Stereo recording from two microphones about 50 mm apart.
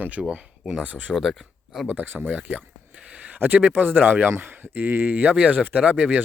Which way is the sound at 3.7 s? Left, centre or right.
Right.